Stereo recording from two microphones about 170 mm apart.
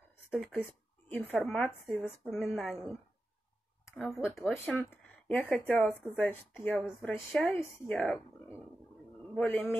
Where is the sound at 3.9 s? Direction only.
Centre (ahead or behind).